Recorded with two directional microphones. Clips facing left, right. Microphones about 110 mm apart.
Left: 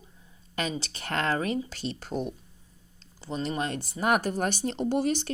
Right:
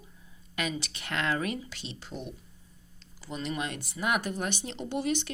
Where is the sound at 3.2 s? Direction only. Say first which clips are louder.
Left 4 dB; 35° left (ahead or behind).